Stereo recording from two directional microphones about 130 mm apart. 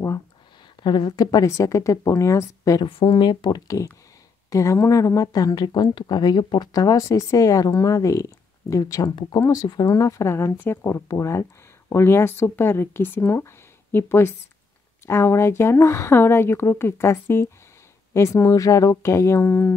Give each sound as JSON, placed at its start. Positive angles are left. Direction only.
{"t": 0.8, "sound": "speech", "side_deg": 35}